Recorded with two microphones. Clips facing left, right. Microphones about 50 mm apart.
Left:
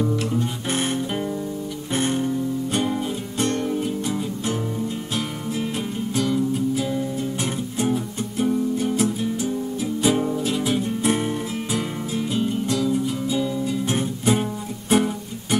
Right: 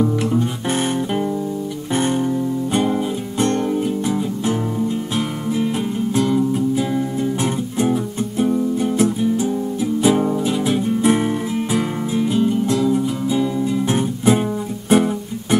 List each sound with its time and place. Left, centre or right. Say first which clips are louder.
0.0 s guitar: right 5 dB; centre
0.7 s guitar: right 4 dB; centre
2.0 s music: right 4 dB; centre
12.6 s music: right 4 dB; centre